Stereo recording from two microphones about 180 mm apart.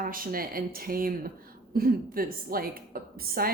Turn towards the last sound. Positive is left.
turn(degrees=-55)  # may be behind; listen again after turning